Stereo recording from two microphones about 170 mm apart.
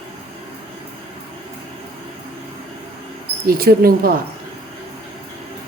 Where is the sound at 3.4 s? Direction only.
60° right (ahead or behind).